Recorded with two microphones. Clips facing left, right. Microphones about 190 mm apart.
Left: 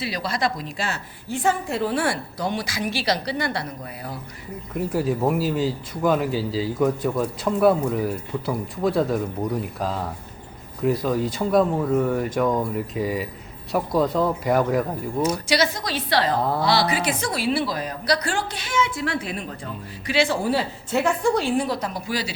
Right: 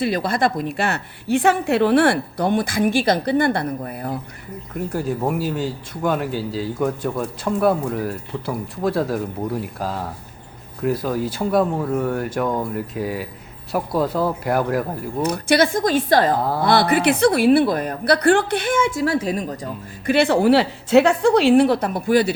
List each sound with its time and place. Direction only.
0.0 s a woman's voice: 50° right (ahead or behind)
4.7 s speech: 5° left (ahead or behind)
15.2 s a woman's voice: 55° right (ahead or behind); by 19.5 s 40° right (ahead or behind)
20.1 s a woman's voice: 60° right (ahead or behind)